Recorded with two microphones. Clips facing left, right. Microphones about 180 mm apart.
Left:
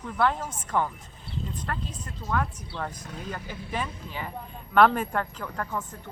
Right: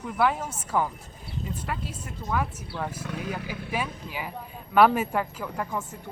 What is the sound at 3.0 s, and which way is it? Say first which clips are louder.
Speech: right 5 dB; 75° right (ahead or behind).